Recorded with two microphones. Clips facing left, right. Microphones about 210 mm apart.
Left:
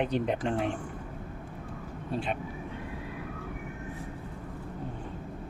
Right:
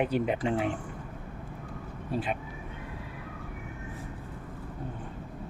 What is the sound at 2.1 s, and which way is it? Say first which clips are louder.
Speech: right 1 dB; 5° right (ahead or behind).